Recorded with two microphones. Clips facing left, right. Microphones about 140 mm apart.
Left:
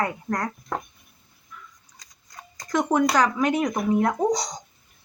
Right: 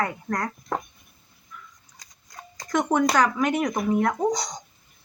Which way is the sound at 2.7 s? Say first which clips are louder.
Even; 5° left (ahead or behind).